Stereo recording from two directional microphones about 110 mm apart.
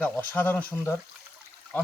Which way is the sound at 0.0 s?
15° left (ahead or behind).